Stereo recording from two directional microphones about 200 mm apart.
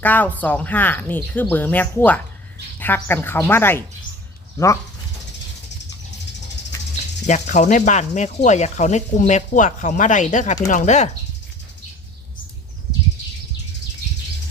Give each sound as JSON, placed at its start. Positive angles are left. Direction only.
{"t": 0.0, "sound": "speech", "side_deg": 10}
{"t": 7.3, "sound": "speech", "side_deg": 35}